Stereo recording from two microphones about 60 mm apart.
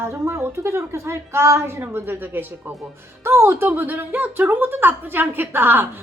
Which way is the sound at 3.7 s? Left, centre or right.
Right.